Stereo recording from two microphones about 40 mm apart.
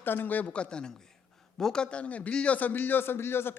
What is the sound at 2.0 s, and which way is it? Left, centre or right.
Speech, left.